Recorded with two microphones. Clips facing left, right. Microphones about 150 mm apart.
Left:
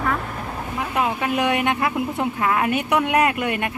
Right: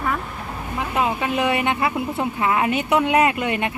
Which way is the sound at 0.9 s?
Centre (ahead or behind).